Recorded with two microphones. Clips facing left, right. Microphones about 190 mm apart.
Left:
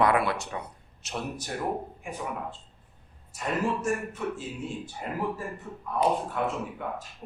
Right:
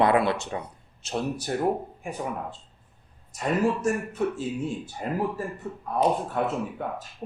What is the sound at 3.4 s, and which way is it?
Speech, 40° right (ahead or behind).